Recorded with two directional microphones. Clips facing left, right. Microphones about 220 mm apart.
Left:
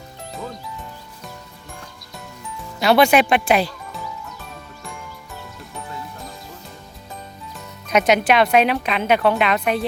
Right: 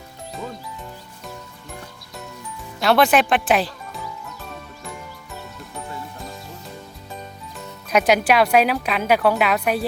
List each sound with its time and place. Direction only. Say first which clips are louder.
2.8 s speech: left 2 dB; centre (ahead or behind)
7.9 s speech: left 1 dB; 5° right (ahead or behind)